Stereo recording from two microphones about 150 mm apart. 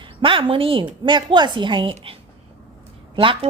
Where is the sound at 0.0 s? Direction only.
35° right (ahead or behind).